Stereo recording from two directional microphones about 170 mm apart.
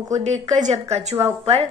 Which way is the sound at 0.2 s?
45° right (ahead or behind).